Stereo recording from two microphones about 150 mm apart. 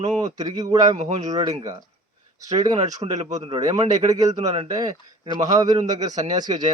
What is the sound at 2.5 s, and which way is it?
Speech, 50° right (ahead or behind).